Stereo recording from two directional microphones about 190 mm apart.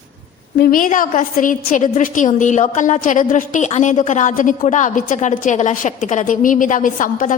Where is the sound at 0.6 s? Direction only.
45° left (ahead or behind).